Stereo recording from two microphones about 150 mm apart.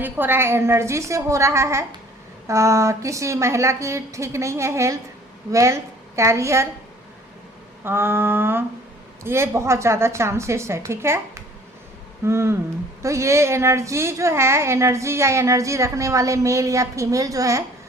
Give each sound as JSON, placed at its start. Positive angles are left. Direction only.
{"t": 0.0, "sound": "a woman's voice", "side_deg": -15}
{"t": 7.9, "sound": "a woman's voice", "side_deg": -15}